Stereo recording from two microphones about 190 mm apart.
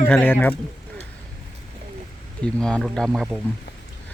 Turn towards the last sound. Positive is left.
turn(degrees=0)  # may be behind; listen again after turning